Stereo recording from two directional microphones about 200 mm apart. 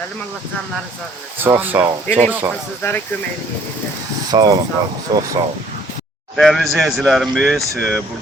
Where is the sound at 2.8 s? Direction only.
15° left (ahead or behind).